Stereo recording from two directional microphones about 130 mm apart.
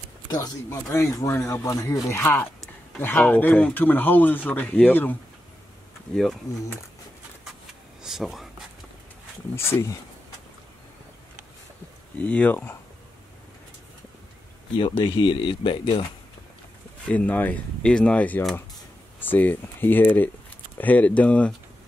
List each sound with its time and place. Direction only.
0.3 s speech: 25° left (ahead or behind)
8.0 s speech: 5° right (ahead or behind)
9.6 s speech: 20° left (ahead or behind)
12.2 s speech: 10° left (ahead or behind)
14.8 s speech: 40° left (ahead or behind)
17.0 s speech: 10° left (ahead or behind)